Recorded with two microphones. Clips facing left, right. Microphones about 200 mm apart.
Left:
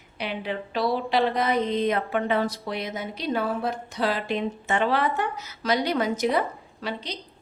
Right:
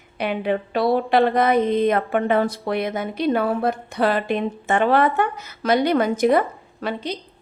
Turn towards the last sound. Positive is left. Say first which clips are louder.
# right 6 dB
turn(degrees=-50)  # may be behind; listen again after turning